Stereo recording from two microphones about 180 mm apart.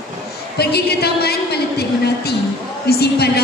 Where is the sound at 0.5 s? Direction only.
60° left (ahead or behind).